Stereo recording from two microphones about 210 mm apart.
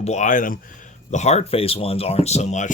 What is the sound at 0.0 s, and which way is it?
Speech, 35° left (ahead or behind).